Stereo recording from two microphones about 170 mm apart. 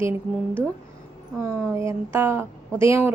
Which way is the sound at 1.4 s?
15° right (ahead or behind).